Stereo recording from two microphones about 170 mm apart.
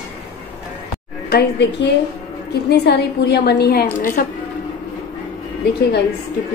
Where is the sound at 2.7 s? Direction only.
75° left (ahead or behind); by 4.2 s 55° left (ahead or behind).